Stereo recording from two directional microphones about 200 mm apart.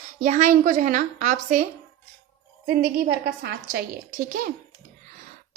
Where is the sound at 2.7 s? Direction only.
50° right (ahead or behind).